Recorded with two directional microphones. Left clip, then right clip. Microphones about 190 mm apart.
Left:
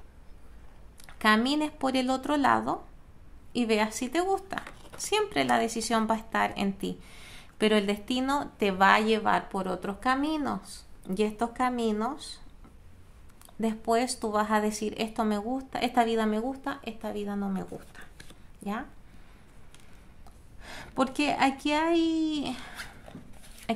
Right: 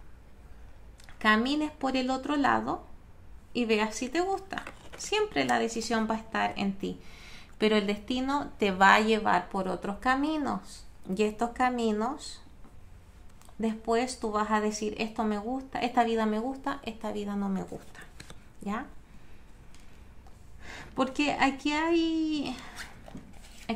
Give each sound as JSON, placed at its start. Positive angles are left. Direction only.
{"t": 1.0, "sound": "a woman's voice", "side_deg": 20}
{"t": 13.6, "sound": "a woman's voice", "side_deg": 20}
{"t": 20.6, "sound": "a child's voice", "side_deg": 20}